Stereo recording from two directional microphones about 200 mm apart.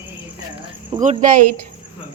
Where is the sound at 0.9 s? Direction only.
40° right (ahead or behind).